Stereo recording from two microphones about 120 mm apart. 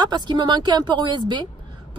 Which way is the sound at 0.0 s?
35° right (ahead or behind).